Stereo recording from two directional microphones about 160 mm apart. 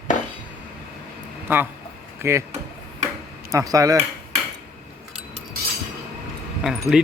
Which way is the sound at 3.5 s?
20° right (ahead or behind).